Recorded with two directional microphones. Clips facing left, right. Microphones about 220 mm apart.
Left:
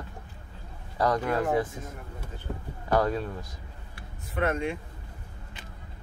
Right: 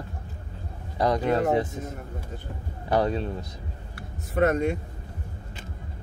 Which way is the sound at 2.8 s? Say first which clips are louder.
Right 1 dB; 20° right (ahead or behind).